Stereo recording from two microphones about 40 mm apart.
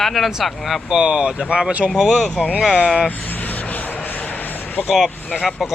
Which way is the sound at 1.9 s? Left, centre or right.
Centre.